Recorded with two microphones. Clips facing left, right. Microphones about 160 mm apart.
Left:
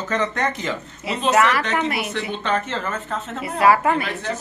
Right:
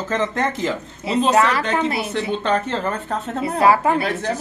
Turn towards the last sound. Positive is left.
turn(degrees=-25)  # may be behind; listen again after turning